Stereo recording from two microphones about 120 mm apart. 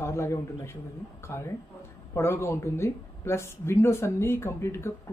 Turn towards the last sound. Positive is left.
turn(degrees=20)  # may be behind; listen again after turning